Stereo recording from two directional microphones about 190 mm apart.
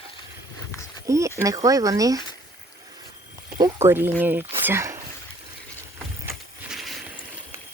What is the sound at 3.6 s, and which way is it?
Speech, 15° right (ahead or behind).